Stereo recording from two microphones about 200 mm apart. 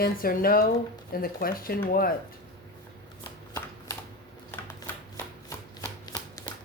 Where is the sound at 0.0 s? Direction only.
45° left (ahead or behind).